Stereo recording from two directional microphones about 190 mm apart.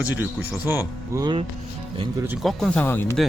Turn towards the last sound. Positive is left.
turn(degrees=10)  # may be behind; listen again after turning